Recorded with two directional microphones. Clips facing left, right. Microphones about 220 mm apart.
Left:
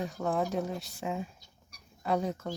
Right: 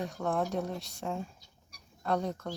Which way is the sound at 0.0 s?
Centre (ahead or behind).